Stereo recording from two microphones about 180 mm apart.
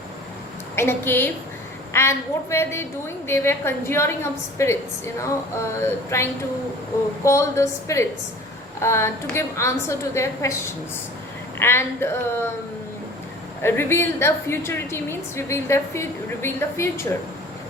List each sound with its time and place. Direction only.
0.8 s a woman's voice: 15° left (ahead or behind)
7.3 s a woman's voice: 15° left (ahead or behind)
13.6 s a woman's voice: 15° left (ahead or behind)